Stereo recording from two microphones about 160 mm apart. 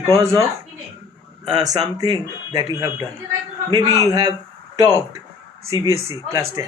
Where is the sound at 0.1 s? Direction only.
20° right (ahead or behind).